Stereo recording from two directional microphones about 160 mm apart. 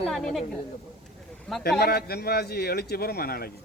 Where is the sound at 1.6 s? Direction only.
80° left.